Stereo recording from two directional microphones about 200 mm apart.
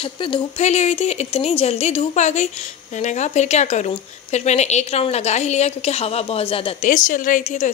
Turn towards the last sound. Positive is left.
turn(degrees=40)  # may be behind; listen again after turning